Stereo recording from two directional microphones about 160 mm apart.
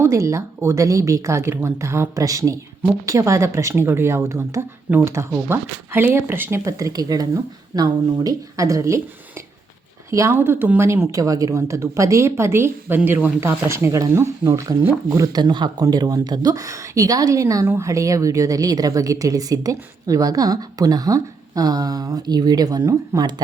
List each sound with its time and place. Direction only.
0.0 s speech: 20° right (ahead or behind)
10.1 s speech: 15° right (ahead or behind)